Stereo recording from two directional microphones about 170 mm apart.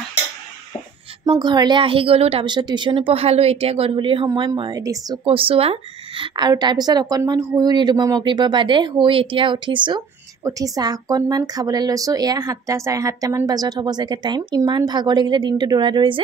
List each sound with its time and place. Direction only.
1.3 s a woman's voice: 25° right (ahead or behind)